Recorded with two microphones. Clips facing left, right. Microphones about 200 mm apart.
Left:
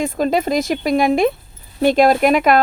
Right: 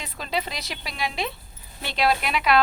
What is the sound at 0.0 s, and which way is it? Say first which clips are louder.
A woman's voice: left 13 dB; 45° left (ahead or behind).